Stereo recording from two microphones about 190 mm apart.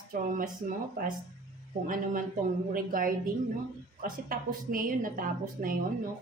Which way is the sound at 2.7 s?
50° right (ahead or behind).